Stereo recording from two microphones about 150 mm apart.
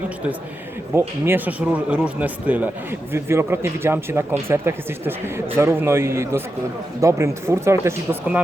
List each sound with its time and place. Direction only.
0.9 s speech: 15° right (ahead or behind)